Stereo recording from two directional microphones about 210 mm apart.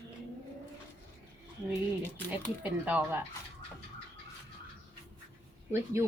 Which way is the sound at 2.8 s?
5° right (ahead or behind).